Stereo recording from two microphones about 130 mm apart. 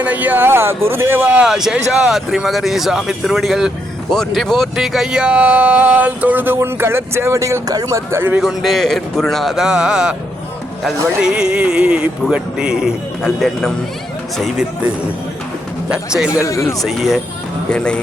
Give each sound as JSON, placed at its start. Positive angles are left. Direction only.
{"t": 0.0, "sound": "speech", "side_deg": -10}
{"t": 8.4, "sound": "speech", "side_deg": 0}
{"t": 15.9, "sound": "speech", "side_deg": -5}
{"t": 16.5, "sound": "speech", "side_deg": 20}
{"t": 16.8, "sound": "speech", "side_deg": 0}